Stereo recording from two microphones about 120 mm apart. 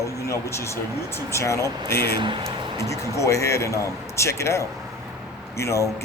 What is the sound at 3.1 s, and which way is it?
A man's voice, 25° left (ahead or behind).